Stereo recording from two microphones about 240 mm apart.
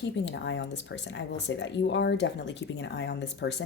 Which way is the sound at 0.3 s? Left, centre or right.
Left.